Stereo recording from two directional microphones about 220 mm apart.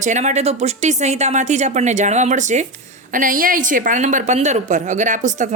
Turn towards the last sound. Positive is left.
turn(degrees=-35)  # may be behind; listen again after turning